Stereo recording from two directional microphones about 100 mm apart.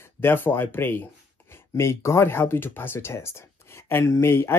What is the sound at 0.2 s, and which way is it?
Speech, 20° left (ahead or behind).